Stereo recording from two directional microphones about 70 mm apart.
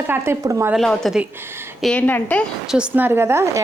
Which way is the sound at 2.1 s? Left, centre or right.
Left.